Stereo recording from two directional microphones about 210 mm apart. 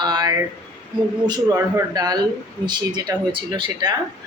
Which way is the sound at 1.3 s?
15° right (ahead or behind).